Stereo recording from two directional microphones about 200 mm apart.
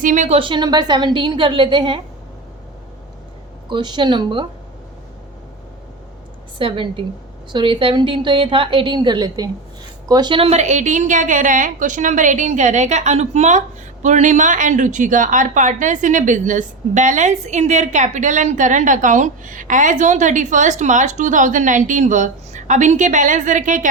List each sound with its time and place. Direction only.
0.0 s a woman's voice: 40° right (ahead or behind)
3.7 s a woman's voice: 20° right (ahead or behind)
6.6 s a woman's voice: 25° right (ahead or behind)